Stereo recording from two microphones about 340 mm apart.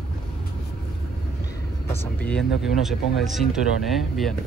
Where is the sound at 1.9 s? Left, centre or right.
Centre.